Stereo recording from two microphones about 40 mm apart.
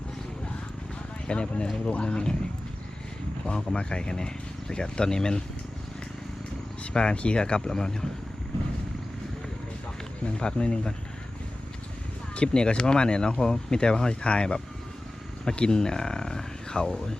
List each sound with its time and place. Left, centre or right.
1.3 s speech: left
3.4 s speech: left
6.9 s speech: left
10.4 s speech: left
12.4 s speech: left